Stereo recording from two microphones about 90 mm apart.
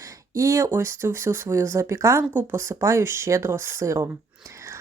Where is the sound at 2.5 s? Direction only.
35° right (ahead or behind).